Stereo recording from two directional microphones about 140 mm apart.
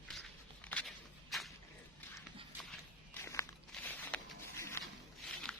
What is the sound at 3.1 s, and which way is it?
Walk, 20° left (ahead or behind).